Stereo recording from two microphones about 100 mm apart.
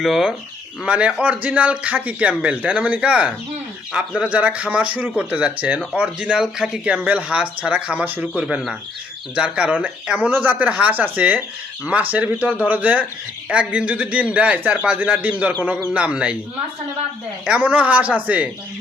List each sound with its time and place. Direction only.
0.0 s a man's voice: 5° right (ahead or behind)
17.7 s a man's voice: 15° right (ahead or behind)